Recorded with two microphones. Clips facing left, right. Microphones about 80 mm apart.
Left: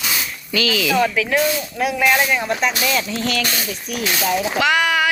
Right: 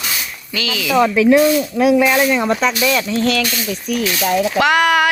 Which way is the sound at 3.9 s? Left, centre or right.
Centre.